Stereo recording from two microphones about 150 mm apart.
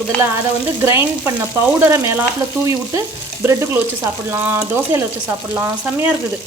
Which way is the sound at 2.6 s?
20° right (ahead or behind).